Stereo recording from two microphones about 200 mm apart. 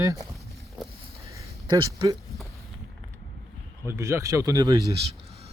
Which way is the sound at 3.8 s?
15° right (ahead or behind).